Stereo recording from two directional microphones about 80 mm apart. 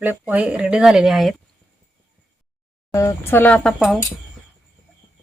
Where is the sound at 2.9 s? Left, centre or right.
Left.